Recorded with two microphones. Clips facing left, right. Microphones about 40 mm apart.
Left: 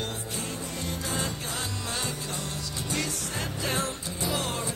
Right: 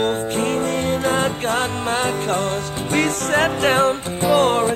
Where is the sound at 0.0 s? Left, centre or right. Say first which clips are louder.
Right 15 dB; right.